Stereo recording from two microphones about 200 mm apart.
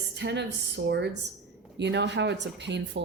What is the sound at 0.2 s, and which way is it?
A woman's voice, 60° right (ahead or behind).